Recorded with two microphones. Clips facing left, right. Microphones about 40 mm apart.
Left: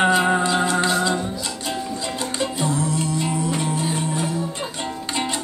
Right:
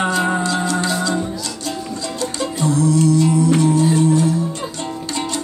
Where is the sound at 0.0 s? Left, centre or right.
Centre.